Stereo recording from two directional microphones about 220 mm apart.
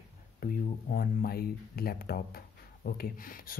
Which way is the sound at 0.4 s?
40° left (ahead or behind).